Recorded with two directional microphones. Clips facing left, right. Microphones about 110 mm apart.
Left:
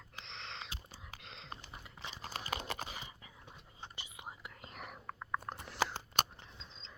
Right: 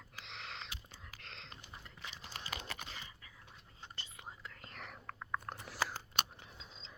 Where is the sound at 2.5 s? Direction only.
35° left (ahead or behind).